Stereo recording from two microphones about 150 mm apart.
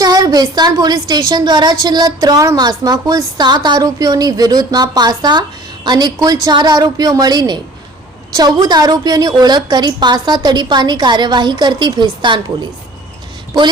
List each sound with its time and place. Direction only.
0.0 s a woman's voice: 25° right (ahead or behind)